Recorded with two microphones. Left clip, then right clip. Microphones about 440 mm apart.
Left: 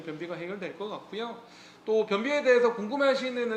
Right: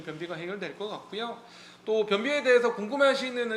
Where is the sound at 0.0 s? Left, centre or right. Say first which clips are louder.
Even; centre.